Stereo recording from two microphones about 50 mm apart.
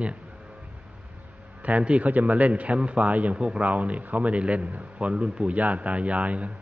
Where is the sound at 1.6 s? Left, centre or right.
Right.